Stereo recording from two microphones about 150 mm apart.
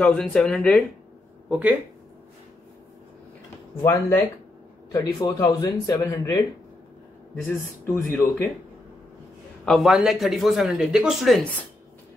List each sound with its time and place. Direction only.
0.0 s speech: 5° left (ahead or behind)
1.5 s speech: 10° right (ahead or behind)
3.8 s speech: 20° left (ahead or behind)
7.4 s speech: 15° left (ahead or behind)
9.7 s speech: centre (ahead or behind)